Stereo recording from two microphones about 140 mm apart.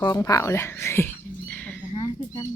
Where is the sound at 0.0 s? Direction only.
25° left (ahead or behind).